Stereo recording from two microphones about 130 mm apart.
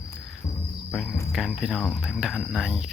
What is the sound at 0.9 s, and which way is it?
Speech, centre (ahead or behind).